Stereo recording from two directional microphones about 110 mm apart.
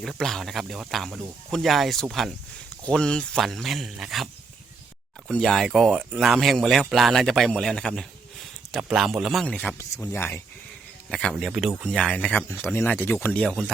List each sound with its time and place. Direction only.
0.0 s speech: 5° left (ahead or behind)
5.3 s speech: 5° left (ahead or behind)
10.1 s speech: 25° left (ahead or behind)
11.1 s speech: 5° left (ahead or behind)